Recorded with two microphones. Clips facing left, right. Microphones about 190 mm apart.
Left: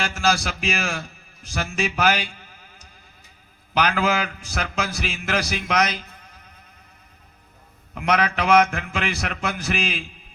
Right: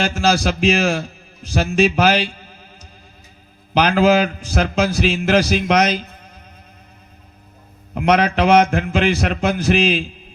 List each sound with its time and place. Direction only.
0.0 s a man's voice: 35° right (ahead or behind)
3.8 s a man's voice: 30° right (ahead or behind)
7.9 s a man's voice: 30° right (ahead or behind)